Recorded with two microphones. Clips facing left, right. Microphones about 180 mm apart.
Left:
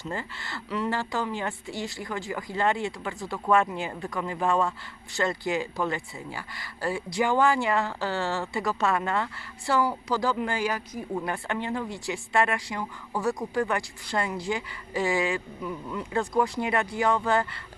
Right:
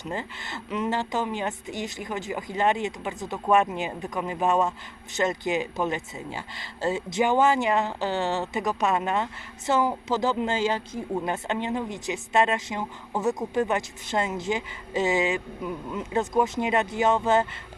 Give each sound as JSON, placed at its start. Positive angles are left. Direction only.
{"t": 0.0, "sound": "speech", "side_deg": -20}